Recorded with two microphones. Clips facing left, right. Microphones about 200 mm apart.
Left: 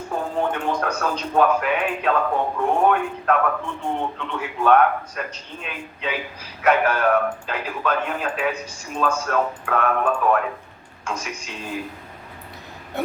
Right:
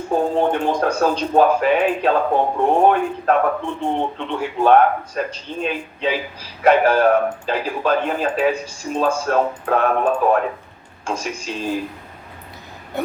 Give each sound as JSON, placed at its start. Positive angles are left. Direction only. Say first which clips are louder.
{"t": 0.1, "sound": "speech", "louder": "right 7 dB", "side_deg": -30}